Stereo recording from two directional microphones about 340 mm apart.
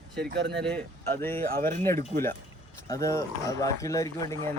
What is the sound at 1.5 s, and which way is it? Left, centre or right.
Speech, right.